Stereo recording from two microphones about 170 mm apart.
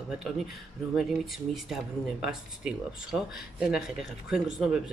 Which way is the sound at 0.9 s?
Centre (ahead or behind).